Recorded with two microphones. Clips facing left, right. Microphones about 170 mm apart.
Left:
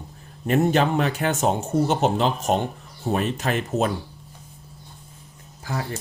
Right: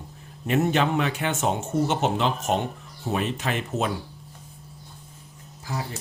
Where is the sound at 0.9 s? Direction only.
40° left (ahead or behind).